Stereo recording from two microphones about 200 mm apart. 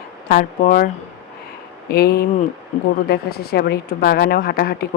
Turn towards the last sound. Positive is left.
turn(degrees=50)  # may be behind; listen again after turning